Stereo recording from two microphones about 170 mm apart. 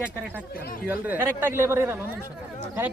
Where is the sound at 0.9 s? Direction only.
10° right (ahead or behind).